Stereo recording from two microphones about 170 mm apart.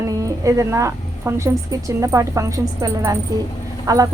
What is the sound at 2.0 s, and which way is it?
A woman's voice, 20° right (ahead or behind).